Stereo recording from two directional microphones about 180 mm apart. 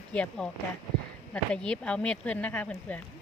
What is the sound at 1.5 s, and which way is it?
Speech, 5° left (ahead or behind).